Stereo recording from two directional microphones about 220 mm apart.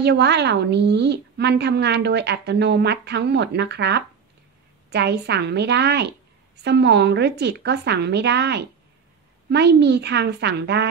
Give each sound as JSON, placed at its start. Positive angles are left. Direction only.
{"t": 0.0, "sound": "a woman's voice", "side_deg": -50}